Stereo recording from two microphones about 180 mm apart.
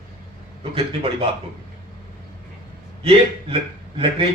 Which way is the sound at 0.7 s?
30° right (ahead or behind).